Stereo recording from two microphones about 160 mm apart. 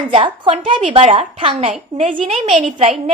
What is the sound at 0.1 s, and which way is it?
A child's voice, 35° right (ahead or behind).